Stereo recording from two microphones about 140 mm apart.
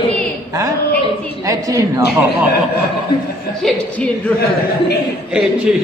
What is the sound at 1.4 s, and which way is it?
A man's voice, 25° right (ahead or behind).